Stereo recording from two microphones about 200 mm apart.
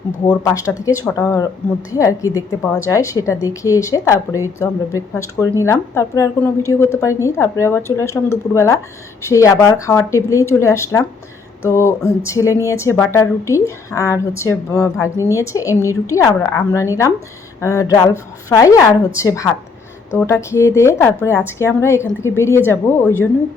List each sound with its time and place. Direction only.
0.3 s a woman's voice: 15° left (ahead or behind)